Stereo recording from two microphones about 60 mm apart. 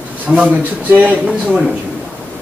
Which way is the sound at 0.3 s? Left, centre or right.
Right.